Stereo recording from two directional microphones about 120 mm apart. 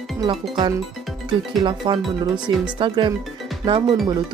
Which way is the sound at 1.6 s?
45° right (ahead or behind).